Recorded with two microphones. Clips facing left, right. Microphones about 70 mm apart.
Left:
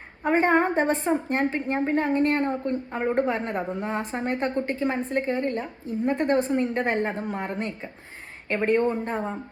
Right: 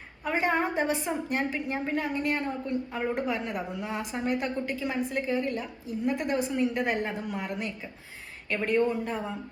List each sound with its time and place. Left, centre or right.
0.3 s a woman's voice: left